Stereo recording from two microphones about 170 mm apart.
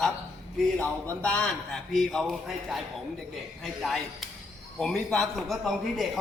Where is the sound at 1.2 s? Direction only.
5° left (ahead or behind).